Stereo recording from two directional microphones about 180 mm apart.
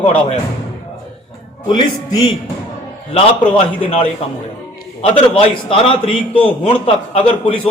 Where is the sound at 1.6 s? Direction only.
25° left (ahead or behind).